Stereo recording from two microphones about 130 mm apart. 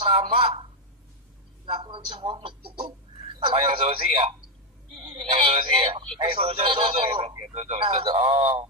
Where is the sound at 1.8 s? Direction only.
40° right (ahead or behind).